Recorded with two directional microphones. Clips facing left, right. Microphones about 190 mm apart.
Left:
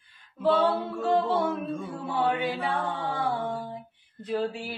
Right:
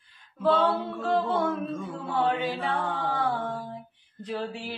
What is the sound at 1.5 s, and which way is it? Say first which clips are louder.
Female singing: even; 10° left (ahead or behind).